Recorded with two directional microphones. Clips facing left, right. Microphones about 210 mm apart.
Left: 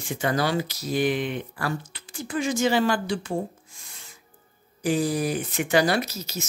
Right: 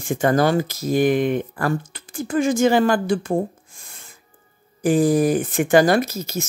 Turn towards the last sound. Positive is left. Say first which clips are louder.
# right 7 dB
turn(degrees=-50)  # may be behind; listen again after turning